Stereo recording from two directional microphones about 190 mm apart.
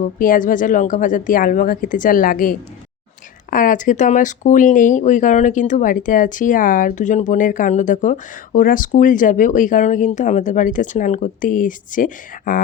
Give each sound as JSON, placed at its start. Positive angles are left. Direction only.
{"t": 0.0, "sound": "speech", "side_deg": 45}